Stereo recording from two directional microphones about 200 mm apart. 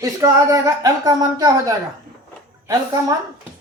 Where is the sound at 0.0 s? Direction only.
15° right (ahead or behind).